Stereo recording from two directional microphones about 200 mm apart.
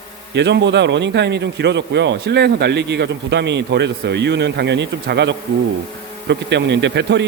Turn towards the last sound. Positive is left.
turn(degrees=-60)  # may be behind; listen again after turning